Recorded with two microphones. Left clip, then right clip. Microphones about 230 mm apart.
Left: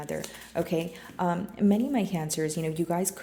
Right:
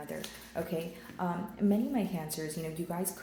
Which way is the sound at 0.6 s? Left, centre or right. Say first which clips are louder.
Left 7 dB; left.